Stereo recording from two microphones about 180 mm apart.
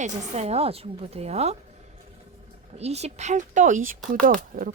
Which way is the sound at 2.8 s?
35° right (ahead or behind).